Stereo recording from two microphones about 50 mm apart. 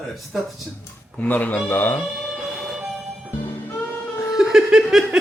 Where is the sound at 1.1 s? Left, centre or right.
Left.